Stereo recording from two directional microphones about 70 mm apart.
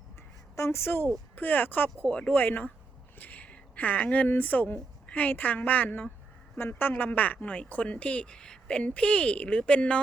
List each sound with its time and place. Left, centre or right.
0.5 s a woman's voice: left
2.0 s speech: centre